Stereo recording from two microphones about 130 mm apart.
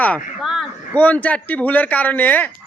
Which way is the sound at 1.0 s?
10° left (ahead or behind).